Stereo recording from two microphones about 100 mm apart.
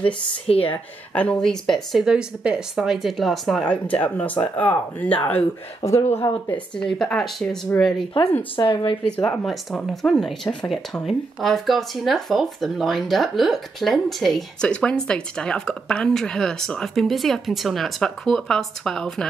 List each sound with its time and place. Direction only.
0.5 s speech: 70° left (ahead or behind)
1.1 s speech: 10° left (ahead or behind)
5.9 s speech: 30° left (ahead or behind)
6.8 s speech: 5° left (ahead or behind)
7.7 s speech: 15° left (ahead or behind)
8.5 s speech: 55° left (ahead or behind)
9.0 s speech: 10° left (ahead or behind)